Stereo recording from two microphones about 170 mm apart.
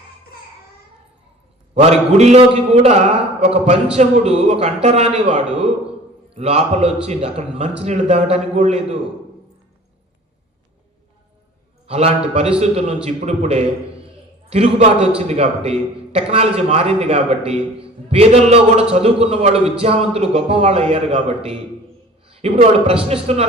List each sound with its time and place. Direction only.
1.7 s a man's voice: 40° right (ahead or behind)
11.9 s a man's voice: 35° right (ahead or behind)